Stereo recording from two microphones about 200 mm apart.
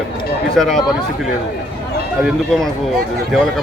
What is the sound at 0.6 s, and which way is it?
Speech, centre (ahead or behind).